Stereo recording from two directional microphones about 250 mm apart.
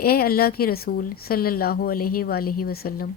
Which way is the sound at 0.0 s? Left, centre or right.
Left.